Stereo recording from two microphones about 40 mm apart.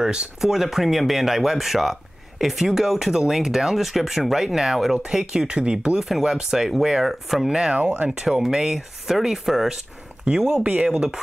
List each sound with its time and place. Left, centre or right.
0.0 s speech: right
0.4 s speech: centre
5.2 s speech: right; by 7.4 s centre
7.4 s speech: centre